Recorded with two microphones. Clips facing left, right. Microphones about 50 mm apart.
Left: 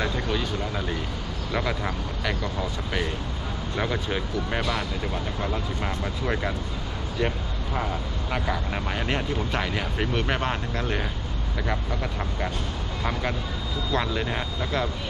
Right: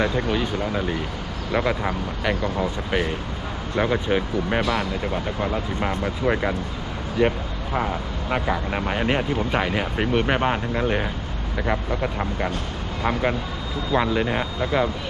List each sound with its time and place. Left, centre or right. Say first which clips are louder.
0.0 s speech: right 5 dB; centre
4.6 s speech: right 4 dB; centre
5.1 s speech: right 4 dB; right